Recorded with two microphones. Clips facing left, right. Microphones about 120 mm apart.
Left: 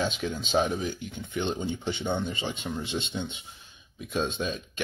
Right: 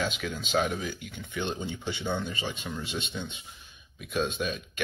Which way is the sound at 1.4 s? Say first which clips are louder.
Left 3 dB; 20° left (ahead or behind).